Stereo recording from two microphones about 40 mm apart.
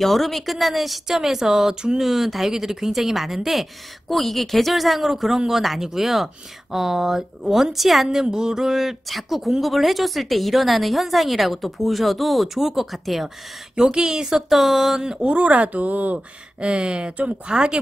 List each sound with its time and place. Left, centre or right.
0.0 s a woman's voice: centre
8.3 s speech: centre
13.7 s a woman's voice: centre
15.2 s speech: right
16.5 s speech: right